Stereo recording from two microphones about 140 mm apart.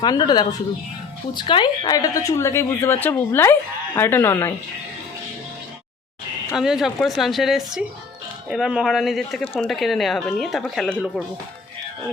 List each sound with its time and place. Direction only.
0.0 s a woman's voice: 30° left (ahead or behind)
6.5 s speech: centre (ahead or behind)